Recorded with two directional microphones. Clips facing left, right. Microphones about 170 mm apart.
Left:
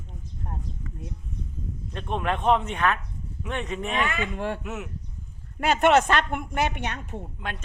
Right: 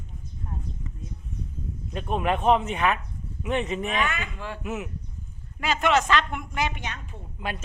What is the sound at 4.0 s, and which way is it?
Speech, 30° left (ahead or behind).